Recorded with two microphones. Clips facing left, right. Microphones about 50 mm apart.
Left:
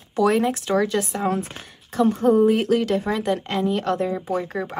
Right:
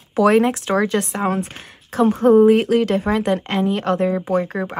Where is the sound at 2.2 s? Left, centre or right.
Right.